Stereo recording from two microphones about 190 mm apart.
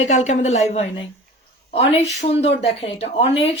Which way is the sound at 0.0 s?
40° left (ahead or behind).